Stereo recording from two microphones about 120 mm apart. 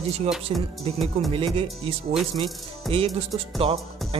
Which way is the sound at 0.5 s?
50° right (ahead or behind).